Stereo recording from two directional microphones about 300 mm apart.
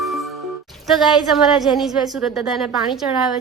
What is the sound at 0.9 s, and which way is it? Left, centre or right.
A woman's voice, centre.